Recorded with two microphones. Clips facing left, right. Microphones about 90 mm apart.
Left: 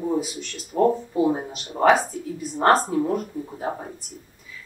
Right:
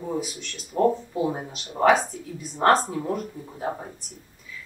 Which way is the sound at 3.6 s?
15° left (ahead or behind).